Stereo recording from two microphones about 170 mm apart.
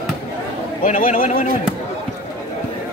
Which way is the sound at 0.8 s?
50° left (ahead or behind).